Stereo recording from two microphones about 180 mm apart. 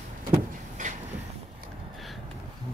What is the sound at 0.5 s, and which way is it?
Vehicle, 45° right (ahead or behind).